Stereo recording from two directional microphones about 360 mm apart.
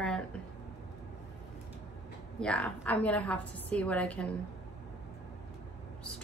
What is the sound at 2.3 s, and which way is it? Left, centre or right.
A woman's voice, centre.